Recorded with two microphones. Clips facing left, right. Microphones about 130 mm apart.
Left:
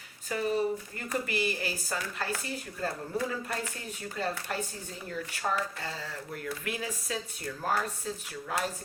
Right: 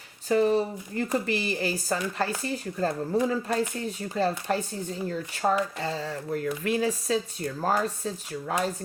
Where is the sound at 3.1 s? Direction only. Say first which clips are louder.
Right 9 dB; 20° right (ahead or behind).